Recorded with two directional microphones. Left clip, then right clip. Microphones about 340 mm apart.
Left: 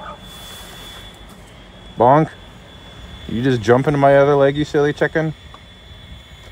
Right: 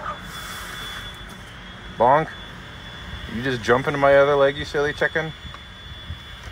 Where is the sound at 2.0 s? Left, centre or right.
Left.